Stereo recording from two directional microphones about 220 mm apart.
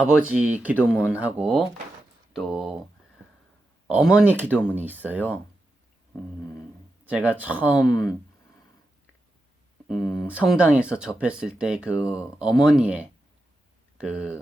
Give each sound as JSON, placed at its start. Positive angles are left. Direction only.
{"t": 0.0, "sound": "speech", "side_deg": -5}
{"t": 3.8, "sound": "speech", "side_deg": -5}
{"t": 7.0, "sound": "speech", "side_deg": -5}
{"t": 7.9, "sound": "speech", "side_deg": 15}
{"t": 10.1, "sound": "speech", "side_deg": -5}